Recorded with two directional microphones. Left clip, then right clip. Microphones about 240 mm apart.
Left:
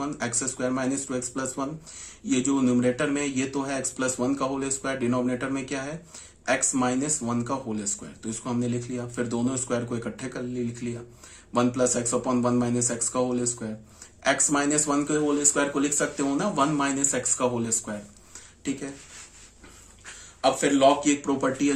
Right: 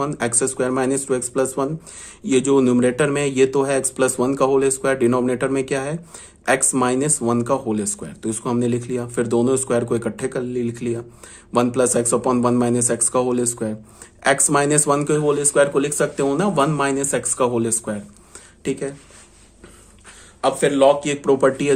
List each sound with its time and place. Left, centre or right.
0.0 s speech: right
20.4 s speech: right